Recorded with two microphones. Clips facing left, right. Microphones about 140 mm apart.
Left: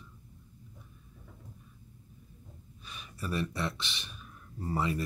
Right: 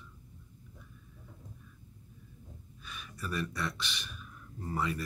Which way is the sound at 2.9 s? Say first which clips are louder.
Left 2 dB; 30° left (ahead or behind).